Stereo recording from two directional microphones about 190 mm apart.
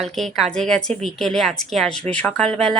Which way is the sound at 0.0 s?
Centre (ahead or behind).